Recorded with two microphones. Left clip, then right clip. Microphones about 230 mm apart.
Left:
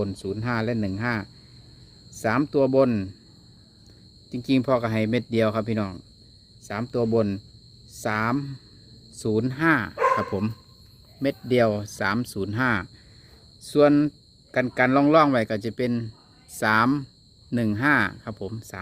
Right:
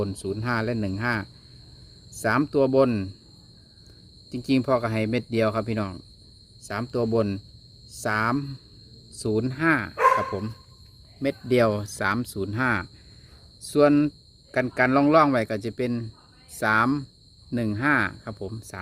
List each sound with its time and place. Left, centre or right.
0.0 s speech: centre
4.3 s speech: centre
10.2 s dog: left
11.4 s speech: centre